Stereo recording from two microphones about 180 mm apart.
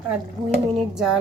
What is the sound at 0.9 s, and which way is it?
Music, 5° right (ahead or behind).